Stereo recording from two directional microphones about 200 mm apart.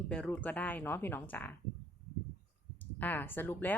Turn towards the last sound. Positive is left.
turn(degrees=10)  # may be behind; listen again after turning